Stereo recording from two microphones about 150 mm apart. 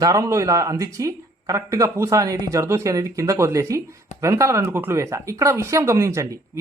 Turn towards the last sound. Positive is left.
turn(degrees=-20)  # may be behind; listen again after turning